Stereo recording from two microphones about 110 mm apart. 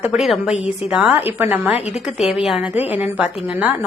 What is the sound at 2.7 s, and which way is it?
Speech, 70° left (ahead or behind).